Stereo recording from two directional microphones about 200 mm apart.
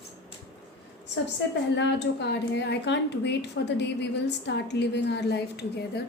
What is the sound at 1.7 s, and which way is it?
A woman's voice, 60° left (ahead or behind).